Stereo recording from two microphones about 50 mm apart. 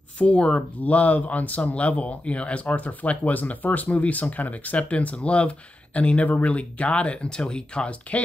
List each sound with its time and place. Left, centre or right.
0.2 s speech: left